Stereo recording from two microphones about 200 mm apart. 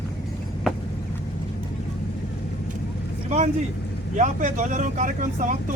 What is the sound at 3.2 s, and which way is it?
Vehicle, 35° right (ahead or behind).